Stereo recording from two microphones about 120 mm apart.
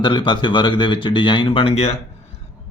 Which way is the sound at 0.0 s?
40° left (ahead or behind).